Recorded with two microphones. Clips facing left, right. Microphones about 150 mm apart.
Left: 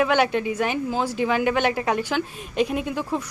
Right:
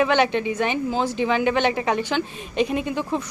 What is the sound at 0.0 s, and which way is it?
A woman's voice, 5° left (ahead or behind).